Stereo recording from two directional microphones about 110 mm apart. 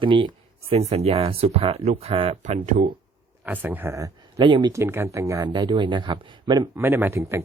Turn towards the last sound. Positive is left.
turn(degrees=-25)  # may be behind; listen again after turning